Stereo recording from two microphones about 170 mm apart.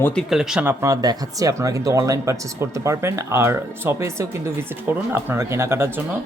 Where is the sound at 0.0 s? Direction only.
Centre (ahead or behind); by 5.9 s 15° right (ahead or behind).